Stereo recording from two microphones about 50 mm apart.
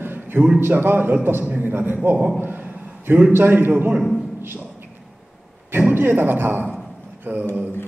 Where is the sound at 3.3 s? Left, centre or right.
Right.